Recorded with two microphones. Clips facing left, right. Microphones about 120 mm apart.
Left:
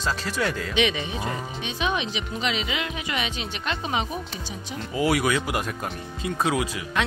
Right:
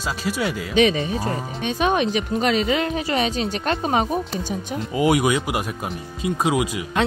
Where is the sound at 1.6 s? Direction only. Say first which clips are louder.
Right 8 dB; 50° right (ahead or behind).